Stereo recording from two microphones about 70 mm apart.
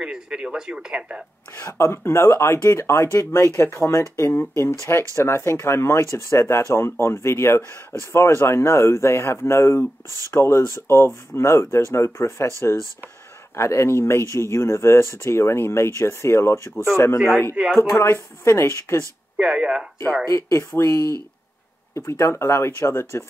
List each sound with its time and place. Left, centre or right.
0.0 s speech: centre
1.5 s speech: left
13.6 s speech: left
19.3 s speech: centre
20.2 s speech: left